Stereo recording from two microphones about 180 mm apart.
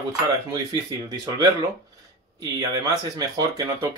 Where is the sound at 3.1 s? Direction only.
20° right (ahead or behind).